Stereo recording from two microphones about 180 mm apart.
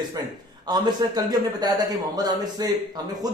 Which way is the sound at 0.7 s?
20° right (ahead or behind).